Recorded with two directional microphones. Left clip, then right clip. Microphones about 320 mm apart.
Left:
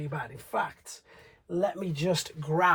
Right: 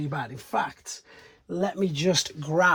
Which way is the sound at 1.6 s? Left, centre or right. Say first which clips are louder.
Right 4 dB; right.